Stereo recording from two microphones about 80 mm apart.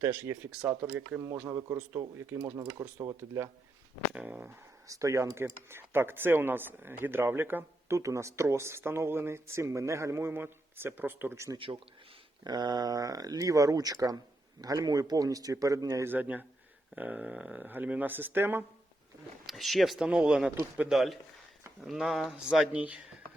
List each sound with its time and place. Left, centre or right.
0.0 s speech: right
2.1 s speech: right
4.1 s speech: centre
4.9 s speech: right
7.9 s speech: right
11.5 s speech: right
12.5 s speech: right
16.0 s speech: right
19.5 s speech: centre